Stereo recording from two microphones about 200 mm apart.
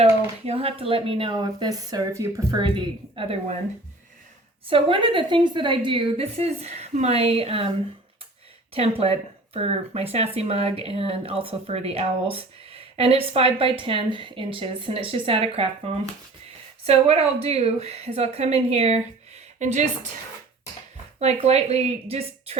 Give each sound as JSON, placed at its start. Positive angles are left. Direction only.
{"t": 0.0, "sound": "speech", "side_deg": -30}
{"t": 4.7, "sound": "speech", "side_deg": -25}
{"t": 8.7, "sound": "a woman's voice", "side_deg": -30}
{"t": 21.2, "sound": "a woman's voice", "side_deg": -30}